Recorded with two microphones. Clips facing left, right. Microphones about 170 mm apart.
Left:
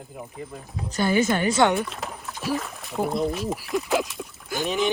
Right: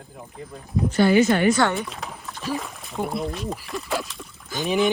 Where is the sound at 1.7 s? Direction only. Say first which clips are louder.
Left 2 dB; centre (ahead or behind).